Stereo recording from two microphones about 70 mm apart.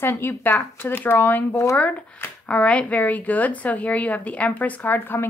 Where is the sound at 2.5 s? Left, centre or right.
Centre.